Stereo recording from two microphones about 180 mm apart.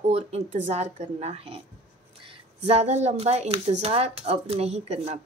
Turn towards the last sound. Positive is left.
turn(degrees=-35)  # may be behind; listen again after turning